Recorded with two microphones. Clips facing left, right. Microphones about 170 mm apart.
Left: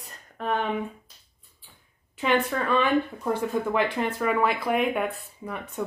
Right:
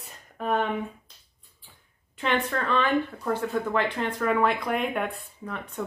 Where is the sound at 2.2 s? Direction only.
10° left (ahead or behind).